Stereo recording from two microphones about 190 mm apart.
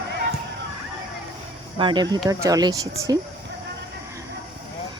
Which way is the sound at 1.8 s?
25° right (ahead or behind).